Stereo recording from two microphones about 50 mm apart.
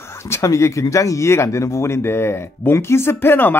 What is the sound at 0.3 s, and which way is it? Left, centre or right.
Speech, left.